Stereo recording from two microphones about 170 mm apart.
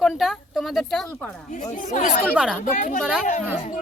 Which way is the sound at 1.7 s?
50° left (ahead or behind).